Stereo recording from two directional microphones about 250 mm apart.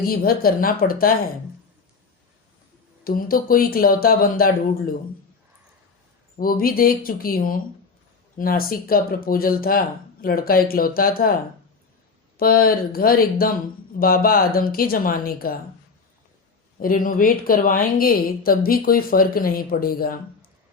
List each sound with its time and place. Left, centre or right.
0.0 s a woman's voice: left
3.0 s a woman's voice: left
6.3 s a woman's voice: left
12.4 s a woman's voice: left
16.8 s a woman's voice: left